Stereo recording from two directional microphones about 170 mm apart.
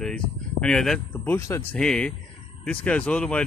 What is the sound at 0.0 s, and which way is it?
Speech, 5° left (ahead or behind).